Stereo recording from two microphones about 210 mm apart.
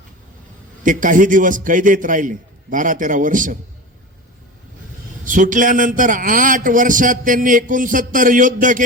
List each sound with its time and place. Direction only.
0.9 s a man's voice: 40° right (ahead or behind)
5.2 s a man's voice: 40° right (ahead or behind)